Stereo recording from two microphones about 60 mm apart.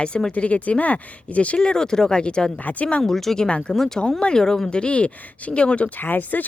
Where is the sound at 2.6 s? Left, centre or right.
Left.